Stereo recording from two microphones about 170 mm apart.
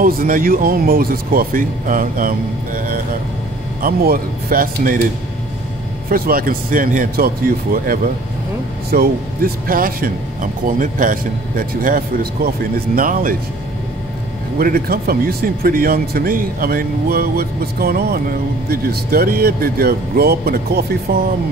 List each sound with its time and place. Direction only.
0.0 s speech: 55° right (ahead or behind)
6.0 s speech: 60° right (ahead or behind)
14.6 s speech: 60° right (ahead or behind)